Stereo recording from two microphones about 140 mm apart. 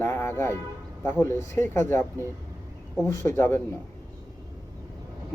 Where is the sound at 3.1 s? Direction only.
20° left (ahead or behind).